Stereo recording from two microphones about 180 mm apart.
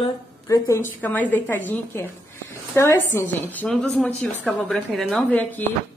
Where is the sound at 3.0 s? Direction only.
10° left (ahead or behind).